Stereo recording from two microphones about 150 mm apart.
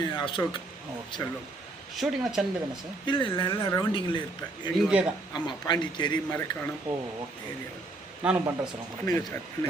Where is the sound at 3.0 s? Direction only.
35° left (ahead or behind).